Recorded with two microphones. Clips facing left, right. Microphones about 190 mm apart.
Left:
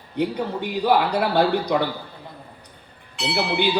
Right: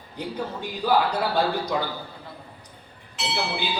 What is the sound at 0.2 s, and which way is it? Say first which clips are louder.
A man's voice: left 7 dB; 65° left (ahead or behind).